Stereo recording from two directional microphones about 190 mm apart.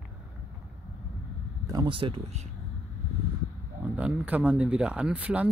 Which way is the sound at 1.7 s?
25° right (ahead or behind).